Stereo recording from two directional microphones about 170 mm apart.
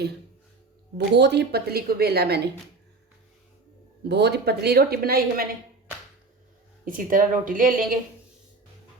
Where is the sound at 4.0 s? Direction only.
80° right.